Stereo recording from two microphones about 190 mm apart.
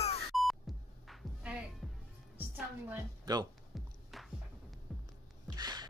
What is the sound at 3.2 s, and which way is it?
Music, 20° right (ahead or behind).